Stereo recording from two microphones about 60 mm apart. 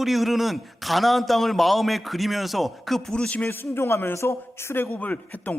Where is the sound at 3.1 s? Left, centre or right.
Centre.